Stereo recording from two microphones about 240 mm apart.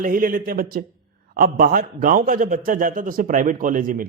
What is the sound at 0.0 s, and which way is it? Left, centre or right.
Speech, right.